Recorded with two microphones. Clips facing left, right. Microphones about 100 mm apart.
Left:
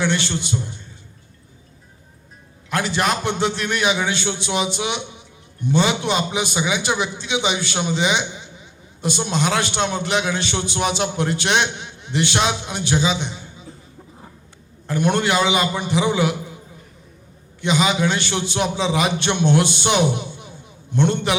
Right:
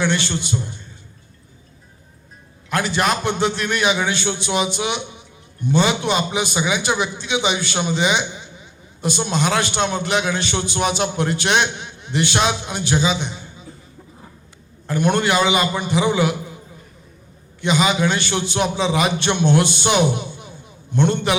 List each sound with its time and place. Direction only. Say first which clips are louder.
0.0 s a man's voice: right 1 dB; 50° right (ahead or behind)
2.6 s a man's voice: right 1 dB; 50° right (ahead or behind)
14.8 s a man's voice: right 1 dB; 50° right (ahead or behind)
17.6 s a man's voice: right 1 dB; 50° right (ahead or behind)